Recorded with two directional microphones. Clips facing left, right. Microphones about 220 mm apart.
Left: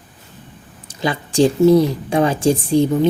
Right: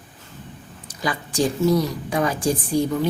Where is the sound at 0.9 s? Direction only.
25° left (ahead or behind).